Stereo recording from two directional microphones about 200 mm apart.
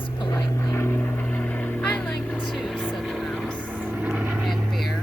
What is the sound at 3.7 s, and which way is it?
Vehicle, 10° right (ahead or behind).